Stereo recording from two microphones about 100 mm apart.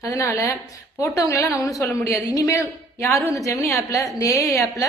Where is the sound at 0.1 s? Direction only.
30° left (ahead or behind).